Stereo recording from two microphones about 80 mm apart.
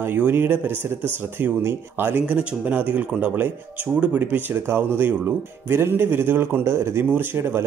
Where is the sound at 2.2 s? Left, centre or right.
Centre.